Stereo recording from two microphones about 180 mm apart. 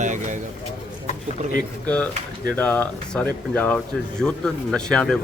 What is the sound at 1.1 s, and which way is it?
Speech, 50° left (ahead or behind).